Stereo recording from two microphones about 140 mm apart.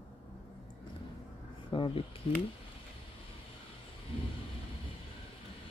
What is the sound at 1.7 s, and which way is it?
Speech, 35° left (ahead or behind).